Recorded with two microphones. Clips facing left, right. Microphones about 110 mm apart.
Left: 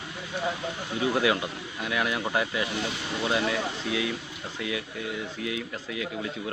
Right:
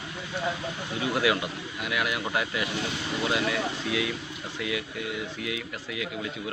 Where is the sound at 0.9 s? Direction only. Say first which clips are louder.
Left 1 dB; 30° left (ahead or behind).